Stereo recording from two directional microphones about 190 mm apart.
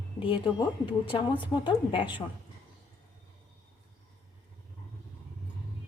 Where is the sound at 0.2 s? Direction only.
25° left (ahead or behind).